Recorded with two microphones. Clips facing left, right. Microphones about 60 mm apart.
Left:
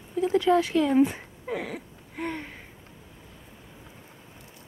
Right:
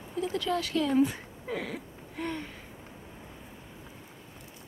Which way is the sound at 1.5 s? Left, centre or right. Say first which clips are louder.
Left 3 dB; centre.